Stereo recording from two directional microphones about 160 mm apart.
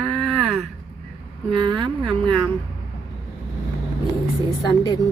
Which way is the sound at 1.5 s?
30° right (ahead or behind).